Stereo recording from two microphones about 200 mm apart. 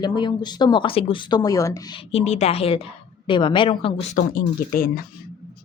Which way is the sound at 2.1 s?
35° left (ahead or behind).